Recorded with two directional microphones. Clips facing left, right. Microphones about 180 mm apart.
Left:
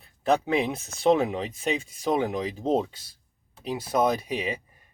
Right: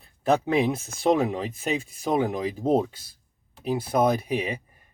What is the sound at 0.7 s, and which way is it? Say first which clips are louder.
Speech: even; centre (ahead or behind).